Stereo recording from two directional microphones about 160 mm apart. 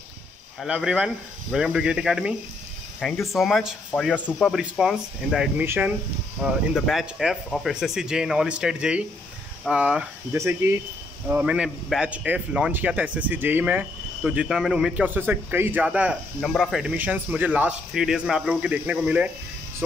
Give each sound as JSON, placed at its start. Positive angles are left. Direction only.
{"t": 0.6, "sound": "a man's voice", "side_deg": -5}
{"t": 10.3, "sound": "a man's voice", "side_deg": -15}